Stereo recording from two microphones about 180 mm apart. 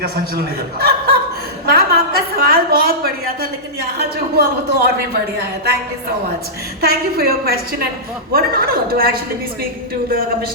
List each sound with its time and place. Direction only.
0.0 s speech: 60° right (ahead or behind)
1.6 s a sound: 60° right (ahead or behind)
3.9 s a man's voice: 60° right (ahead or behind)
6.8 s speech: 60° right (ahead or behind)